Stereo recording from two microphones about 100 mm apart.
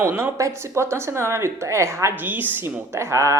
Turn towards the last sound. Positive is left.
turn(degrees=-30)  # may be behind; listen again after turning